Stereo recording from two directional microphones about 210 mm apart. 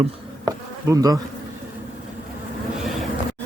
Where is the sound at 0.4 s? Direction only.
15° right (ahead or behind).